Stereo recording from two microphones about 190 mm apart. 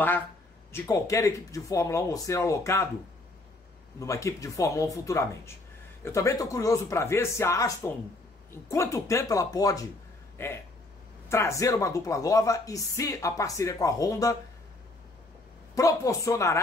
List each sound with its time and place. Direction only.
0.7 s speech: 15° left (ahead or behind)
4.0 s speech: 15° left (ahead or behind)
15.7 s speech: 15° left (ahead or behind)